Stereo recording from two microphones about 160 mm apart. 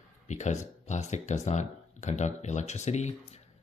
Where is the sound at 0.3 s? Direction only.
45° left (ahead or behind).